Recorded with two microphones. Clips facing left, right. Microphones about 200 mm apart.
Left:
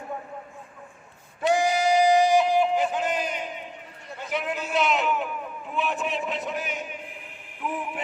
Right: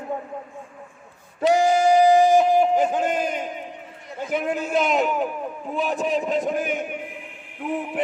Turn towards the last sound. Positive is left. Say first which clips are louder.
# right 4 dB
turn(degrees=-40)  # may be behind; listen again after turning